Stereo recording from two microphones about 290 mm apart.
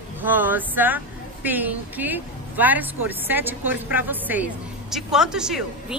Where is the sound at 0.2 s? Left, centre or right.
Centre.